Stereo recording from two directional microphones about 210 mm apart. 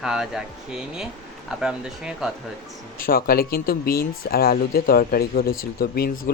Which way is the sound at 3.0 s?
45° left (ahead or behind).